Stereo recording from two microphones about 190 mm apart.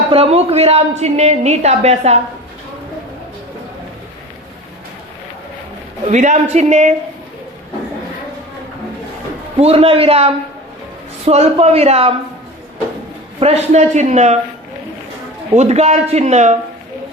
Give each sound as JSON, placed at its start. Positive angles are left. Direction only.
{"t": 0.1, "sound": "a woman's voice", "side_deg": -30}
{"t": 6.1, "sound": "a woman's voice", "side_deg": -40}
{"t": 9.6, "sound": "a woman's voice", "side_deg": -30}
{"t": 13.4, "sound": "a woman's voice", "side_deg": -35}
{"t": 15.5, "sound": "a woman's voice", "side_deg": -35}